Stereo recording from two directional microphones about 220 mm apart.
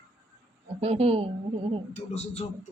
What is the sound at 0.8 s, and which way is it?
Speech, 25° right (ahead or behind).